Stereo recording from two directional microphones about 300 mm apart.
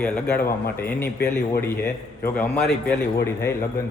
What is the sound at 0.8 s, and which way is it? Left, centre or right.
A man's voice, centre.